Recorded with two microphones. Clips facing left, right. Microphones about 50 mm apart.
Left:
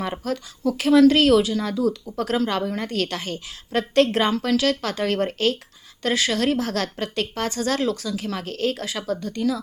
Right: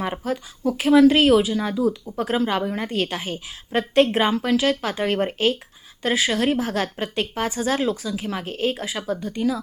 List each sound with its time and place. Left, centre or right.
0.0 s a woman's voice: centre